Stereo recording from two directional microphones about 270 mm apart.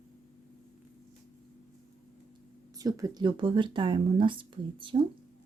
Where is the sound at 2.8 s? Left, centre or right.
Centre.